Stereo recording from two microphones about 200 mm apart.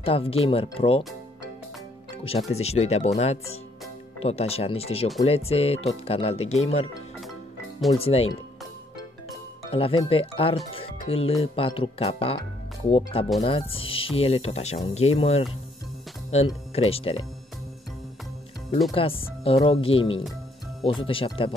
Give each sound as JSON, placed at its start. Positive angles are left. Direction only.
{"t": 0.0, "sound": "speech", "side_deg": 30}
{"t": 2.5, "sound": "speech", "side_deg": 30}
{"t": 7.9, "sound": "speech", "side_deg": 30}
{"t": 9.7, "sound": "speech", "side_deg": 25}
{"t": 18.9, "sound": "speech", "side_deg": 25}